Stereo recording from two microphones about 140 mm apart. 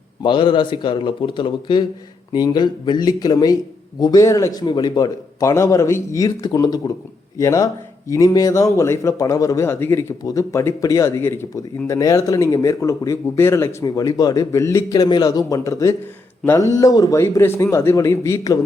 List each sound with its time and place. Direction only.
0.2 s speech: 35° left (ahead or behind)